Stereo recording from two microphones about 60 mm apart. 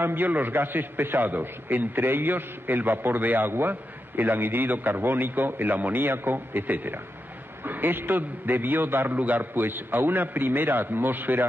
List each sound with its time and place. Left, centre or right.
0.0 s a man's voice: right